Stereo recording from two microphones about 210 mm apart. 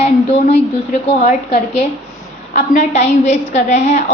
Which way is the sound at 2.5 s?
35° left (ahead or behind).